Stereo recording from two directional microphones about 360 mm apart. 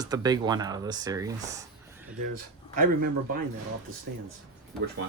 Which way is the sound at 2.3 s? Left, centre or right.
Right.